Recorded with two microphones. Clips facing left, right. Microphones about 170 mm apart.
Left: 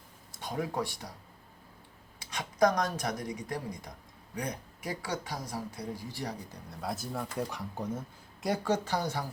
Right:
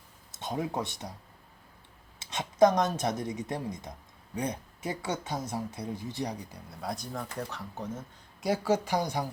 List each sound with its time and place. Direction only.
0.3 s speech: 25° right (ahead or behind)
2.1 s a woman's voice: 25° right (ahead or behind)
6.5 s speech: centre (ahead or behind)
8.4 s speech: 5° right (ahead or behind)